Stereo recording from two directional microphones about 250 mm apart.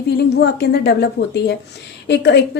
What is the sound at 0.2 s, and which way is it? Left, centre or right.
A woman's voice, left.